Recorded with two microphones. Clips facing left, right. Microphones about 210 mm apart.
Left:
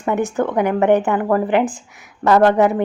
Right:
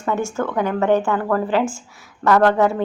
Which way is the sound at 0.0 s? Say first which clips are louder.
Left 3 dB; 15° left (ahead or behind).